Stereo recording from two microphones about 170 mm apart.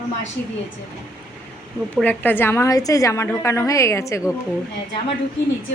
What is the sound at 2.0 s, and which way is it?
A woman's voice, 10° left (ahead or behind).